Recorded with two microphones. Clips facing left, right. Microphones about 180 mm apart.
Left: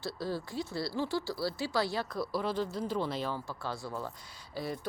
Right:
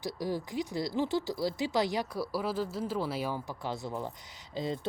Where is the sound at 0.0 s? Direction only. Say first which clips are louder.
Right 2 dB; 15° right (ahead or behind).